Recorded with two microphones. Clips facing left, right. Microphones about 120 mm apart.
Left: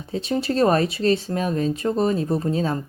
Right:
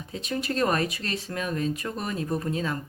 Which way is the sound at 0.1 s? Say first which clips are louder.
Left 7 dB; 30° left (ahead or behind).